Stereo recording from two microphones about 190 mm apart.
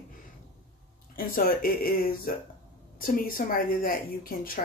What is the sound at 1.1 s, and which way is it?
Speech, 50° left (ahead or behind).